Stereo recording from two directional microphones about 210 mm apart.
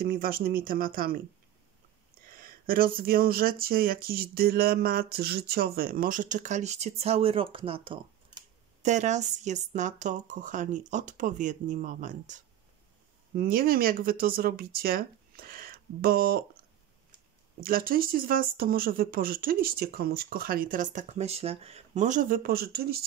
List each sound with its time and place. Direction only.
0.0 s speech: 45° right (ahead or behind)
2.3 s speech: 45° right (ahead or behind)
17.6 s speech: 45° right (ahead or behind)